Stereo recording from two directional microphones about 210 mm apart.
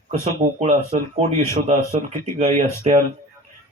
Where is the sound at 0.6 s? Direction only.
35° right (ahead or behind).